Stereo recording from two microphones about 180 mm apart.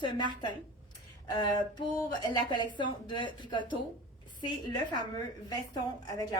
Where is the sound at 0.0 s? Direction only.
25° left (ahead or behind).